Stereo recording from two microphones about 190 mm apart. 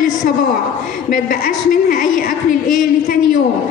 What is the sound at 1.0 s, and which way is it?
A woman's voice, 45° left (ahead or behind).